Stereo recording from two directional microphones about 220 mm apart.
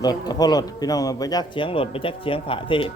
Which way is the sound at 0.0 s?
20° left (ahead or behind).